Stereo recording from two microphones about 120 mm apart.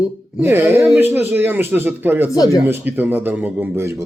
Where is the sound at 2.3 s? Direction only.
30° left (ahead or behind).